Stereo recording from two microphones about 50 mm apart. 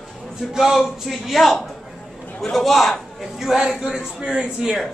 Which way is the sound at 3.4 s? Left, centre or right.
Centre.